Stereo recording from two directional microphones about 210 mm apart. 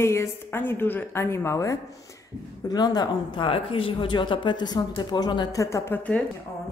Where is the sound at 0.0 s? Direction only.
10° left (ahead or behind).